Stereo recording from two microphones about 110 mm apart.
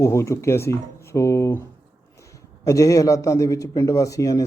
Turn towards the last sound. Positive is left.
turn(degrees=30)  # may be behind; listen again after turning